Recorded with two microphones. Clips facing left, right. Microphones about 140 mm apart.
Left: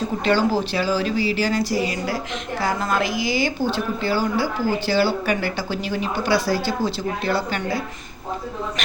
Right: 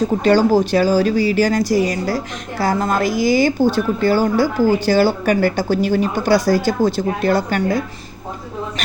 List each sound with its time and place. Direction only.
0.3 s speech: 45° right (ahead or behind)